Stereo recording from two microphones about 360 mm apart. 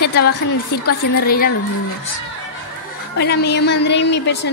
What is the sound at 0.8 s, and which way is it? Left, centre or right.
Speech, left.